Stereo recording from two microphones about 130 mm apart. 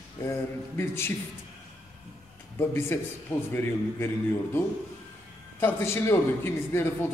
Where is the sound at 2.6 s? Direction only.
15° left (ahead or behind).